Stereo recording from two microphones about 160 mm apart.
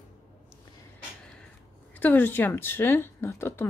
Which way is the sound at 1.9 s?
10° left (ahead or behind).